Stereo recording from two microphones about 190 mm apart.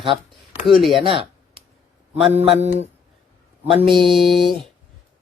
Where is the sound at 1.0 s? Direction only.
25° right (ahead or behind).